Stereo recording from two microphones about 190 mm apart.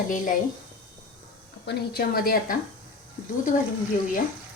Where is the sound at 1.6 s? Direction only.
55° left (ahead or behind).